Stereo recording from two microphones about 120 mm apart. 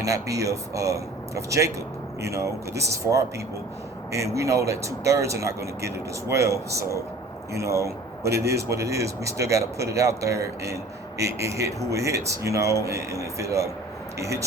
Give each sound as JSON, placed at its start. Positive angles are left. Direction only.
{"t": 0.0, "sound": "speech", "side_deg": -25}